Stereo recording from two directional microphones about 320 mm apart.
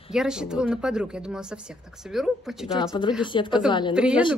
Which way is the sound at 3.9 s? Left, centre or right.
Centre.